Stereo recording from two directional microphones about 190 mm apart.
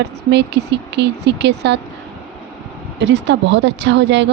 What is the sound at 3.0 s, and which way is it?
Speech, 70° right (ahead or behind).